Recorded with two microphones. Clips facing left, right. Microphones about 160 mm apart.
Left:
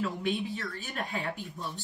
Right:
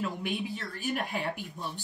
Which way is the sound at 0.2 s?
10° right (ahead or behind).